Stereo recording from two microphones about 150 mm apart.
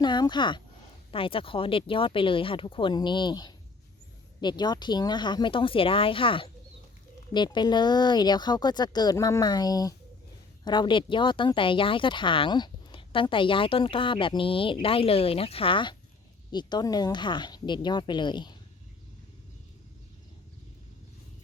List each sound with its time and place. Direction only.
0.0 s speech: 30° left (ahead or behind)